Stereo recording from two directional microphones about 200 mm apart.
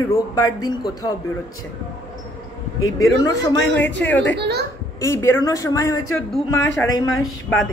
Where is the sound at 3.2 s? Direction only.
20° left (ahead or behind).